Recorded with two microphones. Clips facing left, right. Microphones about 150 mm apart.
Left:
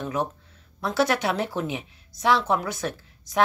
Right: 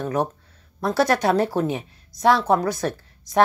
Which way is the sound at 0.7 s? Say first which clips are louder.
Right 3 dB; 40° right (ahead or behind).